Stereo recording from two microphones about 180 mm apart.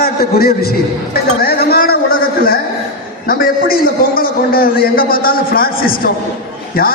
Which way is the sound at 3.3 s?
55° left (ahead or behind).